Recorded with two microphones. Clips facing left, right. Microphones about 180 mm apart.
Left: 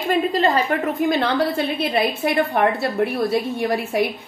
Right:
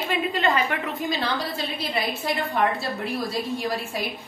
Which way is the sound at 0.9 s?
55° left (ahead or behind).